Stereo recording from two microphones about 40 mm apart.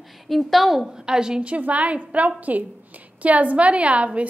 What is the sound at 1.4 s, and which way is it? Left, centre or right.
A woman's voice, right.